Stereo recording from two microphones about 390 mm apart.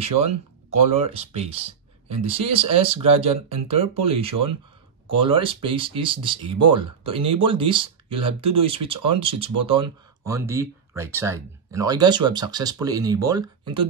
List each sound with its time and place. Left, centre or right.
0.9 s speech: centre